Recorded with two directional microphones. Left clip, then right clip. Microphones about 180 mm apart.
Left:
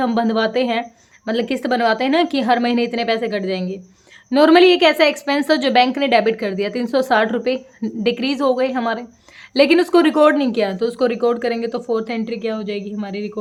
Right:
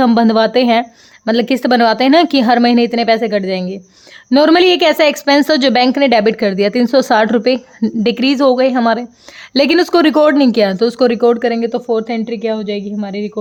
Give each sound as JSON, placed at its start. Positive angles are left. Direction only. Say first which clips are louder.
{"t": 0.0, "sound": "a woman's voice", "louder": "right 7 dB", "side_deg": -45}